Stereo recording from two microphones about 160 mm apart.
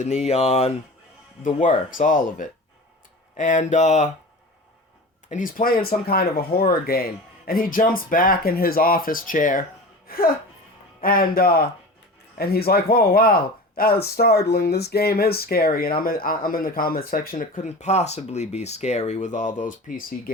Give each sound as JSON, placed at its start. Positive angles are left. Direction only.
{"t": 0.0, "sound": "speech", "side_deg": 45}
{"t": 1.4, "sound": "speech", "side_deg": 55}
{"t": 5.3, "sound": "speech", "side_deg": 55}
{"t": 10.1, "sound": "speech", "side_deg": 65}